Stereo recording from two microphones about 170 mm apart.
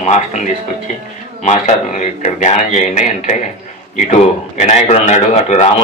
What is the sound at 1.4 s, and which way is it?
A man's voice, 40° left (ahead or behind).